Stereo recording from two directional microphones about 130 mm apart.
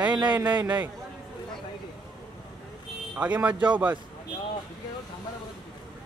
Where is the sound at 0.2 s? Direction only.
35° right (ahead or behind).